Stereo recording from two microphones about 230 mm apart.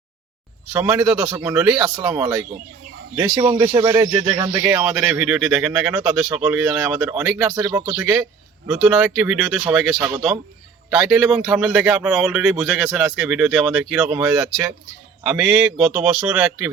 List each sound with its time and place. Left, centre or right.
0.7 s a man's voice: centre